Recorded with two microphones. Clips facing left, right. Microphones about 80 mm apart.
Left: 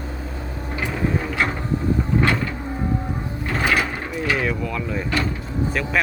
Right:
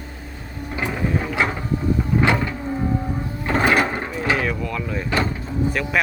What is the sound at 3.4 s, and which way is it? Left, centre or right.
Sewing machine, right.